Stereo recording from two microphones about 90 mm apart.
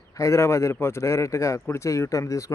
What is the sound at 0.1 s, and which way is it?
Speech, 35° left (ahead or behind).